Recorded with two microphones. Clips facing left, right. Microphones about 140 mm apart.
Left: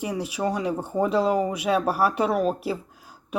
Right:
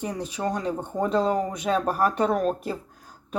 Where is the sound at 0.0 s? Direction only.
10° left (ahead or behind).